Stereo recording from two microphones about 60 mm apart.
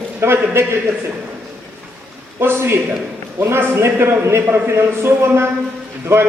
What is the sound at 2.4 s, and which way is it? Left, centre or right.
Speech, right.